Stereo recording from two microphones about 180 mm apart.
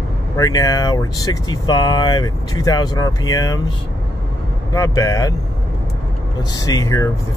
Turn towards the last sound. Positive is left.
turn(degrees=20)  # may be behind; listen again after turning